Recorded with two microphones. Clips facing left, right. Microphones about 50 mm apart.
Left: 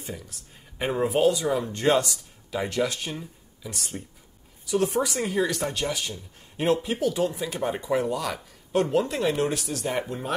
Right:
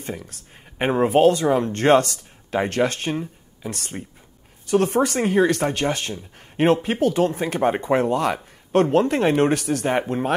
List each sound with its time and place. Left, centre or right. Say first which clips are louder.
0.0 s speech: right 6 dB; right